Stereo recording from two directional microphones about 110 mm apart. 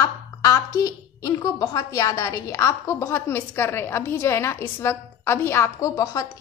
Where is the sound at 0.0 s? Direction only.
30° left (ahead or behind).